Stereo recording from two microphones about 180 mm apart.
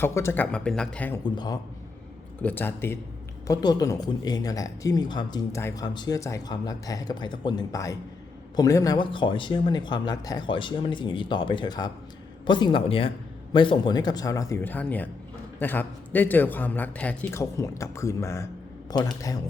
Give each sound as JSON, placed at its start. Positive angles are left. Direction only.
{"t": 0.0, "sound": "a man's voice", "side_deg": 15}
{"t": 1.2, "sound": "speech", "side_deg": 25}
{"t": 2.4, "sound": "a man's voice", "side_deg": 10}